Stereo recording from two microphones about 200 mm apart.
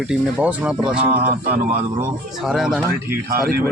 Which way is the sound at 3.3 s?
50° right (ahead or behind).